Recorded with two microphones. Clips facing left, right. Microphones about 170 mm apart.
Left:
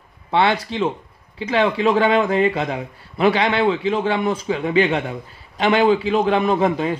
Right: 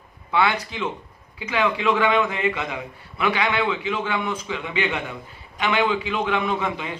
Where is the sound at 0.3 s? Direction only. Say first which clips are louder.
Left 4 dB; 30° left (ahead or behind).